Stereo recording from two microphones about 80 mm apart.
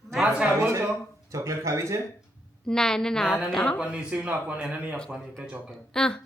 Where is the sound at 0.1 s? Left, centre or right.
Centre.